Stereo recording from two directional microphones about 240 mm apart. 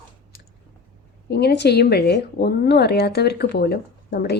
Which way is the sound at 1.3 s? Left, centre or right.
Left.